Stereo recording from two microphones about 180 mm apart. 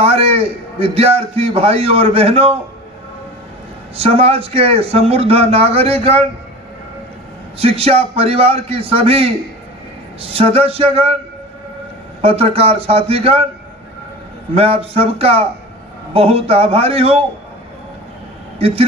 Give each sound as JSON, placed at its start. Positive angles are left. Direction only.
{"t": 0.0, "sound": "a man's voice", "side_deg": -35}
{"t": 3.9, "sound": "a man's voice", "side_deg": -35}
{"t": 7.5, "sound": "a man's voice", "side_deg": -35}
{"t": 12.2, "sound": "a man's voice", "side_deg": -35}
{"t": 14.5, "sound": "a man's voice", "side_deg": -35}